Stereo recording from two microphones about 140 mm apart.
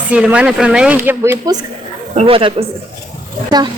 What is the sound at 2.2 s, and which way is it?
A woman's voice, 40° right (ahead or behind).